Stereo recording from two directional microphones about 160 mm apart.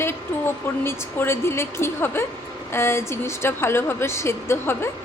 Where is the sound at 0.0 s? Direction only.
15° left (ahead or behind).